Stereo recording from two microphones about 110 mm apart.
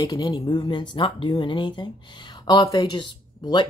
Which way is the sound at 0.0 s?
40° left (ahead or behind).